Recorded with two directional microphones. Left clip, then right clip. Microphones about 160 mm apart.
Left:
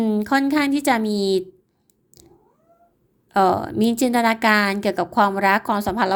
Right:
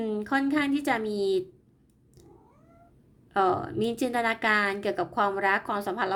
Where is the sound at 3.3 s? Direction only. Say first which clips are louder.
Left 7 dB; 35° left (ahead or behind).